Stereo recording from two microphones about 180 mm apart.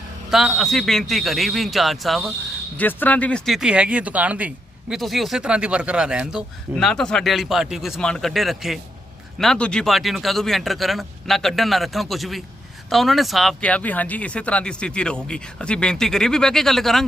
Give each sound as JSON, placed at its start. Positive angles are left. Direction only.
{"t": 0.3, "sound": "speech", "side_deg": 0}